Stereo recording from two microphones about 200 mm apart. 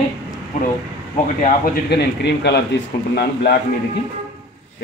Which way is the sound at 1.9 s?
55° left (ahead or behind).